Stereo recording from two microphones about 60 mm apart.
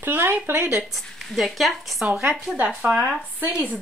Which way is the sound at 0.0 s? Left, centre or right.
Right.